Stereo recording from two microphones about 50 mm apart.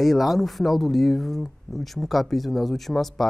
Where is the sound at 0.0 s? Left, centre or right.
Centre.